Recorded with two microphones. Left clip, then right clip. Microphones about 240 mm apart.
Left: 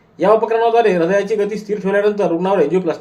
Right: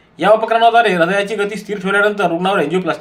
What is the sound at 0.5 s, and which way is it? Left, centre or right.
A man's voice, right.